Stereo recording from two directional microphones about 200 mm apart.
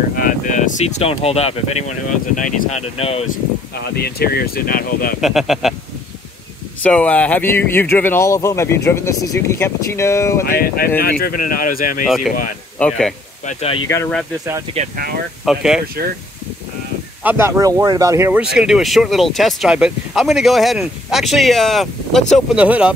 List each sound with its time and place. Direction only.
0.2 s speech: 40° left (ahead or behind)
3.9 s speech: 50° left (ahead or behind)
5.2 s speech: centre (ahead or behind)
6.8 s speech: 5° left (ahead or behind)
10.4 s speech: 45° left (ahead or behind)
12.7 s speech: 5° left (ahead or behind)
13.5 s speech: 30° left (ahead or behind)
14.8 s speech: 30° right (ahead or behind)
15.4 s speech: centre (ahead or behind)
17.2 s speech: 10° right (ahead or behind)